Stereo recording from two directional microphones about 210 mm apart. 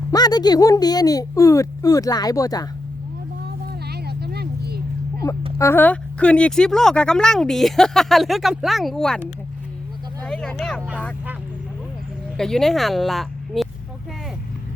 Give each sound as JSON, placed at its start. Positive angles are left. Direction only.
{"t": 0.1, "sound": "speech", "side_deg": 20}
{"t": 3.4, "sound": "a sound", "side_deg": -50}
{"t": 5.5, "sound": "speech", "side_deg": 10}
{"t": 10.2, "sound": "speech", "side_deg": 5}
{"t": 12.4, "sound": "speech", "side_deg": 0}